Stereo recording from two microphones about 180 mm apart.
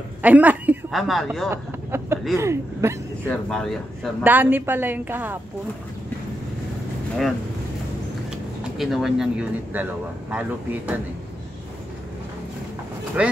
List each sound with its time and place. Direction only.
0.2 s a woman's voice: 10° right (ahead or behind)
1.5 s a woman's voice: 15° right (ahead or behind)
3.3 s speech: 5° left (ahead or behind)
4.2 s a woman's voice: 10° right (ahead or behind)
8.7 s a woman's voice: centre (ahead or behind)
13.2 s a woman's voice: 5° right (ahead or behind)